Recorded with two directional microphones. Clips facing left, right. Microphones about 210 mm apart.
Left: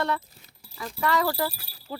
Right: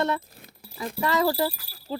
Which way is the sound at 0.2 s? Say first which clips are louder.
Right 6 dB; 55° right (ahead or behind).